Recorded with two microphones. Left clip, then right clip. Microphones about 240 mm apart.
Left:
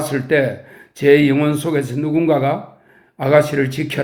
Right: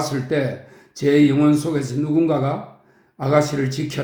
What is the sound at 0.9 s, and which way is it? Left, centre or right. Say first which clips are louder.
Speech: left 4 dB; left.